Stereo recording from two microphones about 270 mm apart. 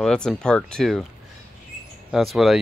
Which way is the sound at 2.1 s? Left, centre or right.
Centre.